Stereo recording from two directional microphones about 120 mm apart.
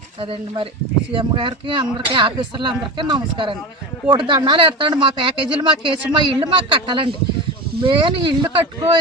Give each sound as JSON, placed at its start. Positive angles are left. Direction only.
{"t": 0.2, "sound": "speech", "side_deg": -50}